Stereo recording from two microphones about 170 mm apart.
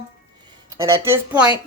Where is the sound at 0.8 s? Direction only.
15° right (ahead or behind).